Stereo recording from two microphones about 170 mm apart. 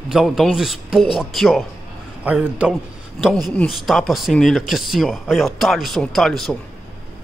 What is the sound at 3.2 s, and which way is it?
Speech, centre (ahead or behind).